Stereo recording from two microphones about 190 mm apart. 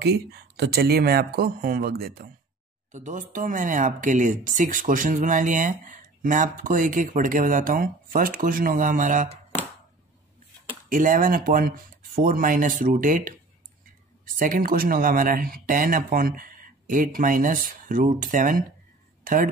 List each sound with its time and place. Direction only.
0.0 s speech: 60° right (ahead or behind)
2.9 s speech: 40° right (ahead or behind)
10.9 s speech: 45° right (ahead or behind)